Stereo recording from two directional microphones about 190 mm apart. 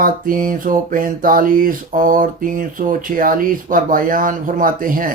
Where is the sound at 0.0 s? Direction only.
45° right (ahead or behind).